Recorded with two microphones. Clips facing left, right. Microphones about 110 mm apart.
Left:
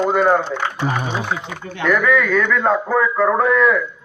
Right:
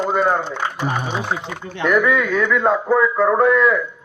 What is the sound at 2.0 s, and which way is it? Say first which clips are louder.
A man's voice: left 1 dB; 15° right (ahead or behind).